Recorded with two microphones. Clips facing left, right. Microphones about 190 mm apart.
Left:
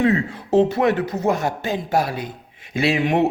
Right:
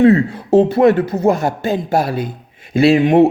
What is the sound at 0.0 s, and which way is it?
Speech, 35° right (ahead or behind).